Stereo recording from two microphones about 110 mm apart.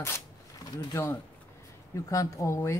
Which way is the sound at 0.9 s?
25° left (ahead or behind).